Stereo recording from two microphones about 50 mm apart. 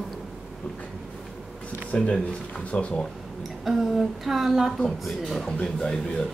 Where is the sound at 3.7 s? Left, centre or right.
Centre.